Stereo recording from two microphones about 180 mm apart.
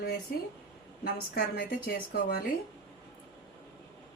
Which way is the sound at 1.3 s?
55° left (ahead or behind).